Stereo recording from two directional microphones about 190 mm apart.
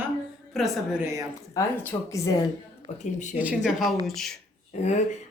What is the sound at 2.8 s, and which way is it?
Speech, 40° left (ahead or behind).